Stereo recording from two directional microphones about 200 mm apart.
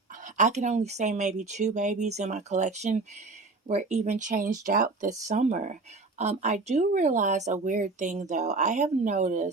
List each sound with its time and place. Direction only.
0.3 s speech: 35° right (ahead or behind)